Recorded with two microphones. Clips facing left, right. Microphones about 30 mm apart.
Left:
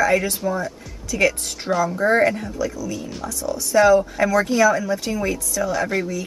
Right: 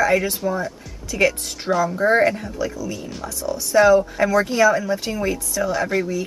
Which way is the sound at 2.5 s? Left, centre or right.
Right.